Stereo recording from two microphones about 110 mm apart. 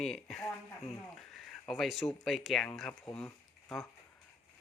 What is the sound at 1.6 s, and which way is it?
Speech, centre (ahead or behind).